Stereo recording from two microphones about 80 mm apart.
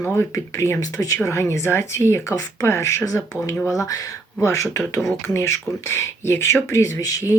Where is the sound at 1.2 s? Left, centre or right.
Left.